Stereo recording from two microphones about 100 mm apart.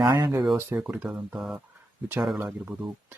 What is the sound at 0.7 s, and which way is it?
Speech, 10° right (ahead or behind).